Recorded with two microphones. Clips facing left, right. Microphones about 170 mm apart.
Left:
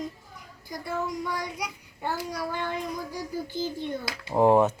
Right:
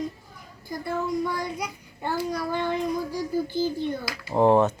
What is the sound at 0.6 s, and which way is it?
A child's voice, 15° left (ahead or behind).